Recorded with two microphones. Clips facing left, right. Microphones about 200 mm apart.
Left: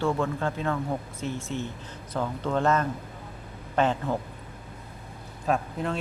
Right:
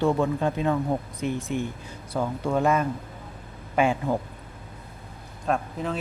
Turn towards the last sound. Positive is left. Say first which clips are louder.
# even
turn(degrees=0)  # may be behind; listen again after turning